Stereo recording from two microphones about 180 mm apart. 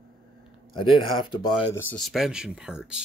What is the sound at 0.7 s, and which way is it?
Speech, 30° left (ahead or behind).